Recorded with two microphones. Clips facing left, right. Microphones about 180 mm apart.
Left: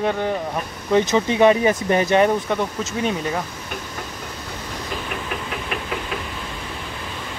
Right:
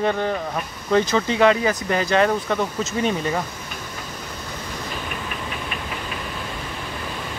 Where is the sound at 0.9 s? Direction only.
20° left (ahead or behind).